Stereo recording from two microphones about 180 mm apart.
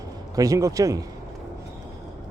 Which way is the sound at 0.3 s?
20° right (ahead or behind).